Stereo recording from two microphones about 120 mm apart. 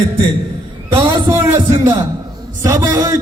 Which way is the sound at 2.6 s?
25° right (ahead or behind).